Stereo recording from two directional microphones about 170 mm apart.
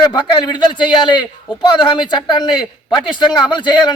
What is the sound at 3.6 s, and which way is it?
Speech, 25° left (ahead or behind).